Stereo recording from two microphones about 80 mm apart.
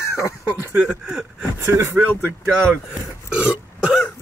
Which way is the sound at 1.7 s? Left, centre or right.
Right.